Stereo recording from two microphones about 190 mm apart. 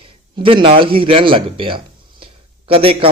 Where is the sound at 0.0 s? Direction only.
25° right (ahead or behind).